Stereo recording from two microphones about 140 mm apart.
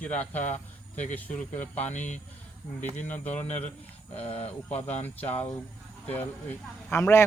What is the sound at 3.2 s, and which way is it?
A man's voice, 55° left (ahead or behind).